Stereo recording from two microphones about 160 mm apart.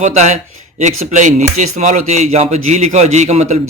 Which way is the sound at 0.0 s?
45° right (ahead or behind).